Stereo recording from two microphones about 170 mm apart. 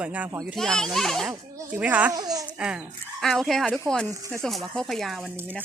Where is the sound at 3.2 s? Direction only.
Centre (ahead or behind).